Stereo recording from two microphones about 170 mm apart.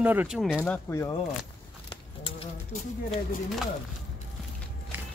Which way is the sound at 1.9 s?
30° left (ahead or behind).